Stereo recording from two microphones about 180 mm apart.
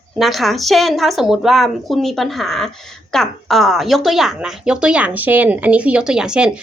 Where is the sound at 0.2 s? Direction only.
Centre (ahead or behind).